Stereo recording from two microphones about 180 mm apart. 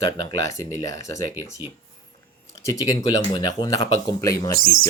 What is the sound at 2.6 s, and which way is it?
Speech, 15° left (ahead or behind).